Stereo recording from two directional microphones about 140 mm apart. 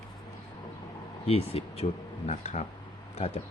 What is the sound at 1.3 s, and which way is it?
Speech, 45° left (ahead or behind).